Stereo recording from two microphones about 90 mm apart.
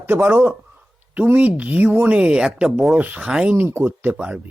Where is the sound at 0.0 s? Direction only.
20° right (ahead or behind).